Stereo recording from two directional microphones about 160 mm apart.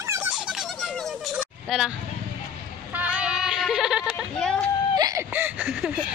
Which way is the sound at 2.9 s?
10° right (ahead or behind).